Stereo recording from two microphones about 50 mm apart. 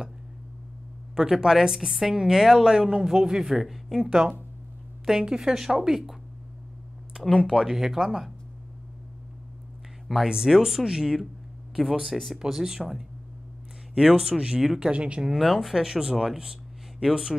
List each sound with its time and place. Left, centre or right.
1.1 s a woman's voice: centre
7.2 s speech: centre
7.5 s a woman's voice: centre
10.2 s a woman's voice: centre
15.2 s a woman's voice: centre